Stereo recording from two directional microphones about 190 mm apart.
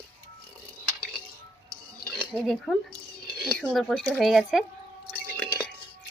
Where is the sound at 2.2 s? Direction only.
Centre (ahead or behind).